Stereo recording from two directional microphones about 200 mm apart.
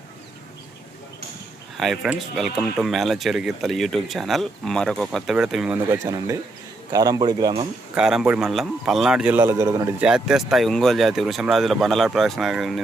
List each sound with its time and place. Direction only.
1.8 s speech: centre (ahead or behind); by 7.7 s 20° right (ahead or behind)
7.9 s speech: 5° right (ahead or behind)
10.0 s speech: 5° right (ahead or behind)